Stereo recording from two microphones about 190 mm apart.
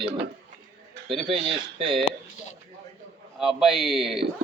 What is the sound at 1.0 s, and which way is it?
Speech, 30° right (ahead or behind).